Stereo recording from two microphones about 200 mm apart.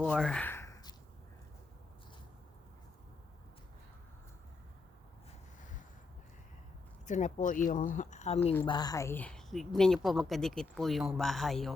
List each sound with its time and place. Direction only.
0.0 s sigh: 5° left (ahead or behind)
7.1 s speech: 40° left (ahead or behind)
8.6 s a woman's voice: 20° left (ahead or behind); by 11.7 s centre (ahead or behind)